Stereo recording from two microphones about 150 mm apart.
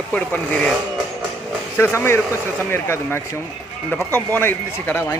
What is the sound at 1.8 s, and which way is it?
A man's voice, 15° left (ahead or behind).